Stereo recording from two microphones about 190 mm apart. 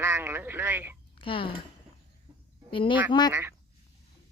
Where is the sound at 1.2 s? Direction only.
30° left (ahead or behind).